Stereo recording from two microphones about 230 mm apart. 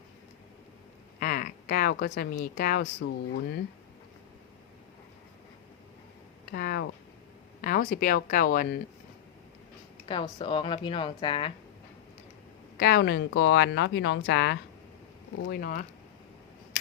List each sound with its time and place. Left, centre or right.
1.2 s speech: left
6.5 s a sound: left
7.6 s speech: left
10.1 s speech: left
12.8 s speech: left
15.4 s speech: left